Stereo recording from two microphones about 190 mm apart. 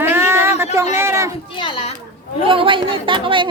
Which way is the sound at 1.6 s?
30° left (ahead or behind).